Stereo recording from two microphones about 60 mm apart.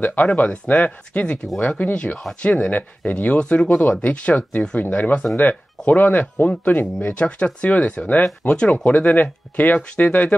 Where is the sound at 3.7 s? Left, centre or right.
Left.